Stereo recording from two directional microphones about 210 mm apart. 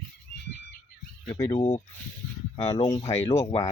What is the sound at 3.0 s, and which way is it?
Speech, 30° left (ahead or behind).